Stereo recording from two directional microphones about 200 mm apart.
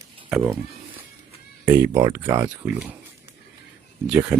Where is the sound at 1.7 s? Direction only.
10° right (ahead or behind).